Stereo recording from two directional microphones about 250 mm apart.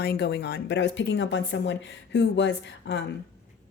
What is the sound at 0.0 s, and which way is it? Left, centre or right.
A woman's voice, left.